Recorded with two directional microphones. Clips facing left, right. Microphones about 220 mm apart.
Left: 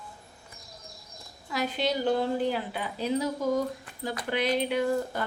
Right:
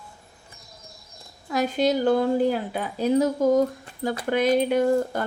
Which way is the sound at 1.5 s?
45° right (ahead or behind).